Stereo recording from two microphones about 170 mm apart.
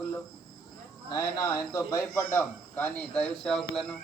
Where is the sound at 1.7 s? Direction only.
15° left (ahead or behind).